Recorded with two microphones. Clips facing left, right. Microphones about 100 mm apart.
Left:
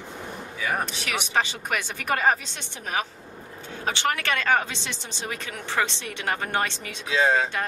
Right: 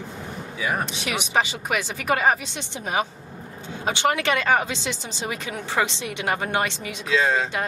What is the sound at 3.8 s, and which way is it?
Speech, 15° right (ahead or behind).